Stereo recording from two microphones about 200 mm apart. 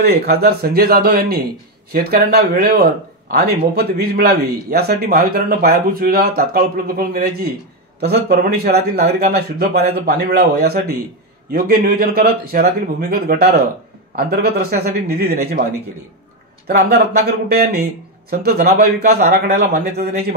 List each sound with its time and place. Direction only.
0.0 s speech: 50° right (ahead or behind)
16.6 s speech: 45° right (ahead or behind)
18.4 s speech: 50° right (ahead or behind)